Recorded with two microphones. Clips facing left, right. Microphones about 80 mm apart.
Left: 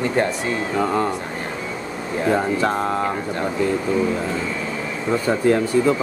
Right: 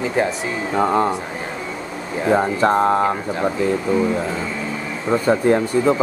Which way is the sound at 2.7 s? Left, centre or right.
Right.